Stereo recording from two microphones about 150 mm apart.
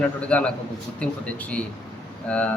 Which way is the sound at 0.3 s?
10° left (ahead or behind).